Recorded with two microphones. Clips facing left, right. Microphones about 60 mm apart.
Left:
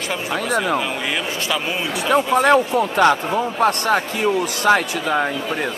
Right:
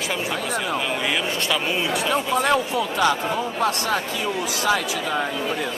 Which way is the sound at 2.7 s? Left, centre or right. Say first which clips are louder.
Left 5 dB; left.